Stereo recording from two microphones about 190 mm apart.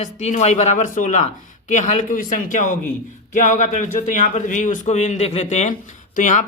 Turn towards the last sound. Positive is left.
turn(degrees=40)  # may be behind; listen again after turning